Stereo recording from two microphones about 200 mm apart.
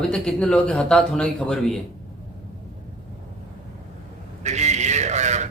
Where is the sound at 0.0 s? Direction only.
5° left (ahead or behind).